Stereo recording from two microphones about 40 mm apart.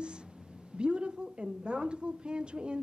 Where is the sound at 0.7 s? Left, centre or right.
Right.